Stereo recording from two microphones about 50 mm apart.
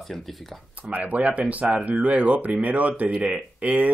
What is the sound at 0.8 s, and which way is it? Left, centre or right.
Speech, right.